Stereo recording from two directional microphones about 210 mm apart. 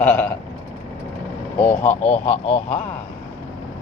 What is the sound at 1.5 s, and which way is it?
Speech, 35° left (ahead or behind).